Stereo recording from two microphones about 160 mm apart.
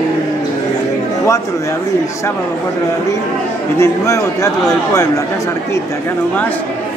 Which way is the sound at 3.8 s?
20° left (ahead or behind).